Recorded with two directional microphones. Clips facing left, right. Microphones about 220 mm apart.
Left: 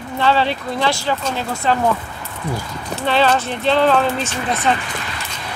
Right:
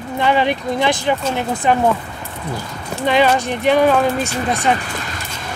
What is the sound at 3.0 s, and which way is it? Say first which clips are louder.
Speech: right 2 dB; 15° right (ahead or behind).